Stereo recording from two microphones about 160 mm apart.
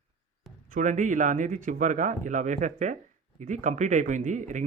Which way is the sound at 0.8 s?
50° right (ahead or behind).